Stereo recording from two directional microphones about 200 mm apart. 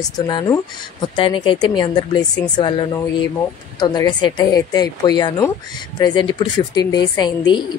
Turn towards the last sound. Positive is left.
turn(degrees=20)  # may be behind; listen again after turning